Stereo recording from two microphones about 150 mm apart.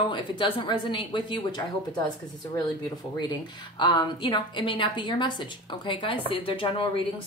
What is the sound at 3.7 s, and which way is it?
A woman's voice, 30° left (ahead or behind).